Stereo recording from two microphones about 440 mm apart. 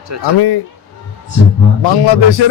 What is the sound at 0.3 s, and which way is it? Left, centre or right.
Speech, left.